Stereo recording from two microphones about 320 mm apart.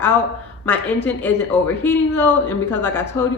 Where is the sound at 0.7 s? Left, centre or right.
Centre.